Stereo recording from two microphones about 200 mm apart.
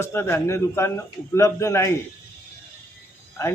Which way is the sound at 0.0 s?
10° left (ahead or behind).